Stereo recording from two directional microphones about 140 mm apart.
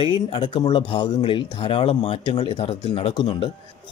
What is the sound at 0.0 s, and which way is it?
Speech, 35° left (ahead or behind).